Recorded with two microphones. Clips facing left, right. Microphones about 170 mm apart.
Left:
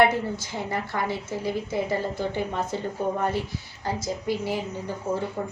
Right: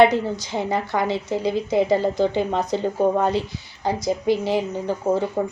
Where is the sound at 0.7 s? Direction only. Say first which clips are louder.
Right 5 dB; 90° right.